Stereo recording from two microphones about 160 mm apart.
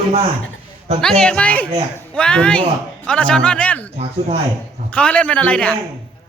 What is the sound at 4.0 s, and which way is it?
Speech, 40° right (ahead or behind).